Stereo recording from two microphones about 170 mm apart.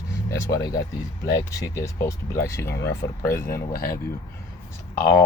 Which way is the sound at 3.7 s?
60° left (ahead or behind).